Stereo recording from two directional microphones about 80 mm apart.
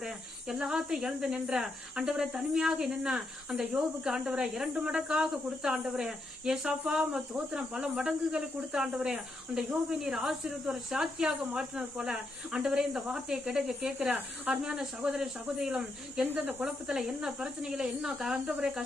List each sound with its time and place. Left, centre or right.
0.0 s speech: centre
16.2 s speech: right
16.6 s speech: centre